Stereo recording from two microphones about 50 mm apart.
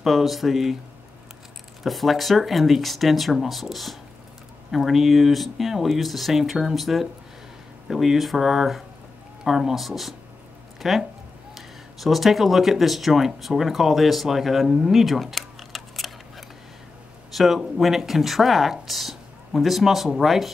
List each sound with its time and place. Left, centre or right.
0.0 s speech: centre
1.8 s speech: centre